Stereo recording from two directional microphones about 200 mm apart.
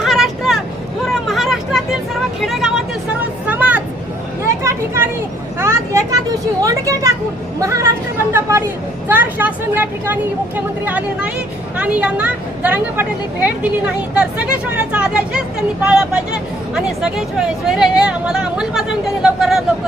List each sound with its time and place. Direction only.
0.0 s vehicle: centre (ahead or behind)
6.6 s a woman's voice: 15° right (ahead or behind)
16.7 s speech: centre (ahead or behind)